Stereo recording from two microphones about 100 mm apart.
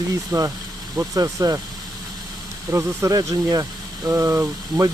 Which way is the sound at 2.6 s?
30° right (ahead or behind).